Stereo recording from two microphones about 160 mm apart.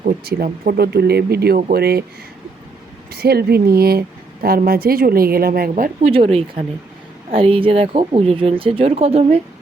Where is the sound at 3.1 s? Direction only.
75° right (ahead or behind); by 6.1 s 55° right (ahead or behind).